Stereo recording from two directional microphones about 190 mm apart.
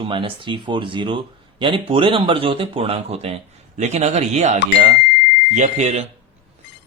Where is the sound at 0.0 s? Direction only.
25° right (ahead or behind).